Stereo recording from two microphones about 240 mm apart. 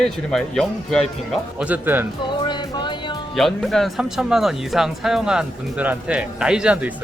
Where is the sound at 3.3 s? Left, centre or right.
Centre.